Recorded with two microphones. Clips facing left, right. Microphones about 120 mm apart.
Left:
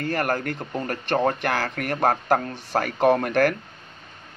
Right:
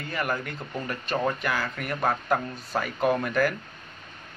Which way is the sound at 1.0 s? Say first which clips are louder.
Left 5 dB; 60° left (ahead or behind).